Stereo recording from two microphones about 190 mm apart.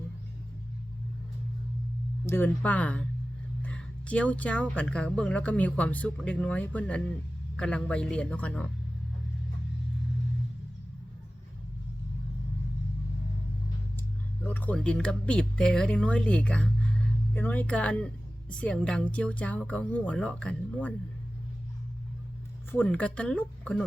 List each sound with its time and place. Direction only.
2.2 s speech: 10° left (ahead or behind)
14.4 s speech: 10° left (ahead or behind)
22.7 s speech: 10° left (ahead or behind)